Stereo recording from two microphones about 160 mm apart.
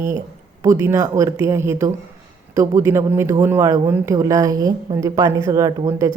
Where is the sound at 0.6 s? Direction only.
15° right (ahead or behind).